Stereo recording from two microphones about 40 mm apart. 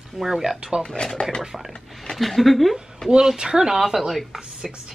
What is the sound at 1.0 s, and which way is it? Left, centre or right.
Speech, left.